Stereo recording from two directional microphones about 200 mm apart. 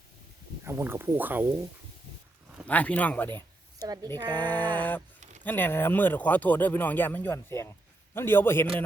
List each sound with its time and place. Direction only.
0.6 s speech: 10° right (ahead or behind)
2.6 s speech: 5° left (ahead or behind)
3.8 s a woman's voice: 20° right (ahead or behind)
4.2 s a sound: 20° right (ahead or behind)
4.4 s speech: 10° left (ahead or behind)